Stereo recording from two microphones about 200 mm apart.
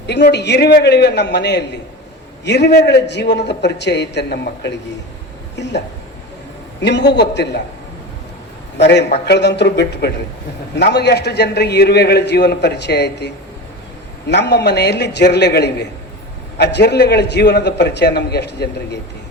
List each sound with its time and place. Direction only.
0.1 s a man's voice: 55° left (ahead or behind)
6.8 s a man's voice: 60° left (ahead or behind)
8.8 s a man's voice: 60° left (ahead or behind)